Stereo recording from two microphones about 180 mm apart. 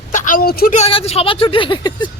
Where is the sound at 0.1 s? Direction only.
45° left (ahead or behind).